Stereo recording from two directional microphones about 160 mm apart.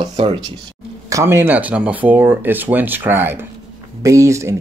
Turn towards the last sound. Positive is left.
turn(degrees=-20)  # may be behind; listen again after turning